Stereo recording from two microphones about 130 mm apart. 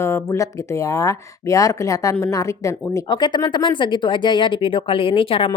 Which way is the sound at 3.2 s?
35° left (ahead or behind).